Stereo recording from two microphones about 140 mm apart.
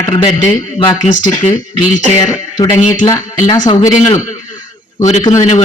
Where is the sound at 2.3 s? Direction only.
25° left (ahead or behind).